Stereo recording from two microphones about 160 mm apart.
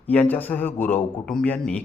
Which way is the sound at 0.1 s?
10° left (ahead or behind).